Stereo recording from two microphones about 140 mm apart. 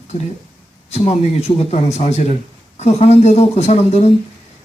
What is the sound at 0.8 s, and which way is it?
A man's voice, 50° left (ahead or behind).